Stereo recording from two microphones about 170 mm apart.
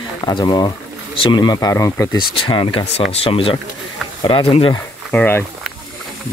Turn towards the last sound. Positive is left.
turn(degrees=10)  # may be behind; listen again after turning